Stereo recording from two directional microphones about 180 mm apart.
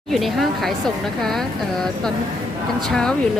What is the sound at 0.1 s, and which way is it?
Speech, centre (ahead or behind).